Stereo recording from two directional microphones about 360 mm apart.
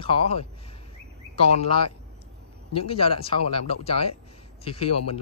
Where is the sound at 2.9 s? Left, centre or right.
Centre.